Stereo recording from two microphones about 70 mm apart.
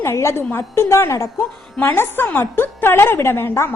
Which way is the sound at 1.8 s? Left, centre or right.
Left.